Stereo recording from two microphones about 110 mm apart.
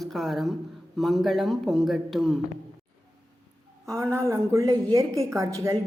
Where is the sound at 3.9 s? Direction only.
25° right (ahead or behind).